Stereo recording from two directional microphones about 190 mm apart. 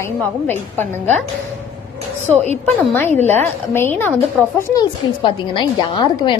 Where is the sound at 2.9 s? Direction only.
10° left (ahead or behind).